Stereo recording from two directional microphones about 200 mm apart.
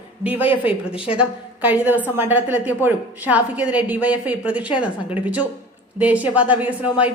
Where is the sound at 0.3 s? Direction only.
5° right (ahead or behind).